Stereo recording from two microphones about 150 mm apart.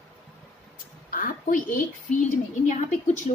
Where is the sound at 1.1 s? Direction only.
70° left (ahead or behind).